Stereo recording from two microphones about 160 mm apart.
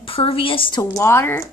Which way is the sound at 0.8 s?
20° left (ahead or behind).